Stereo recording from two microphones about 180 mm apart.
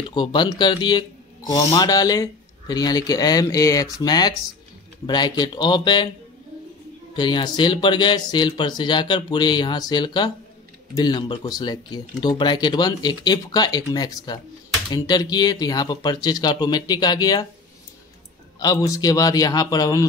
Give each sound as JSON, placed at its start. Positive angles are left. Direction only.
{"t": 0.1, "sound": "speech", "side_deg": 25}
{"t": 7.2, "sound": "speech", "side_deg": 25}
{"t": 18.6, "sound": "speech", "side_deg": 20}